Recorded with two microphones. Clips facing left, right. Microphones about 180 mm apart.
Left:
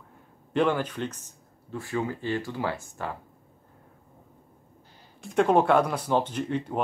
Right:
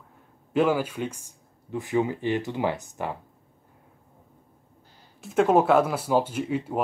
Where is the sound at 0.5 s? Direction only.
5° right (ahead or behind).